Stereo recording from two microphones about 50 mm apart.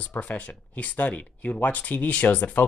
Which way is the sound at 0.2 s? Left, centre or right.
Left.